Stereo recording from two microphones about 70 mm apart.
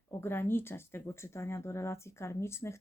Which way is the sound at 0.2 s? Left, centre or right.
Left.